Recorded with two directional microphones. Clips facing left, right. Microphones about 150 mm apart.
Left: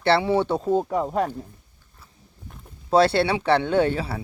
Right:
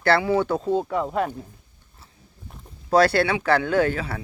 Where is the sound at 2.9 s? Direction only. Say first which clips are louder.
Even; 25° left (ahead or behind).